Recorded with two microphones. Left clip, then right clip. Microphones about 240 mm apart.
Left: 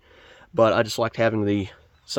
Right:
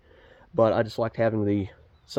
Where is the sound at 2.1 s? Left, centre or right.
Centre.